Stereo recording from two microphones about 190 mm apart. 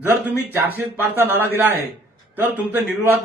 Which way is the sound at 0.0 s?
10° right (ahead or behind).